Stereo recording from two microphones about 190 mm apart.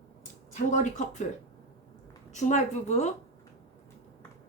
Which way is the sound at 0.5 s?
40° left (ahead or behind).